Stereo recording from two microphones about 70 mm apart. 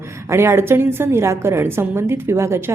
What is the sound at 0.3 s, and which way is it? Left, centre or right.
A woman's voice, right.